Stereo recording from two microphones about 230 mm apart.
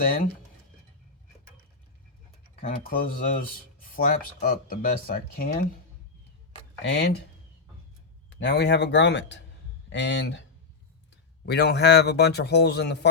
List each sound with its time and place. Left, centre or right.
2.6 s speech: left
6.8 s a man's voice: left
8.4 s a man's voice: left
11.4 s a man's voice: left